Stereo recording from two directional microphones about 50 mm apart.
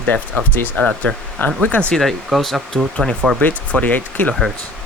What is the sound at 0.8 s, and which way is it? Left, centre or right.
Speech, left.